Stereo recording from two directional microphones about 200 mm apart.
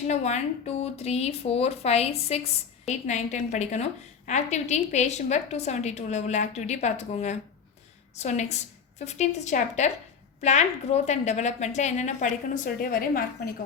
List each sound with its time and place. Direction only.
0.1 s speech: 35° left (ahead or behind)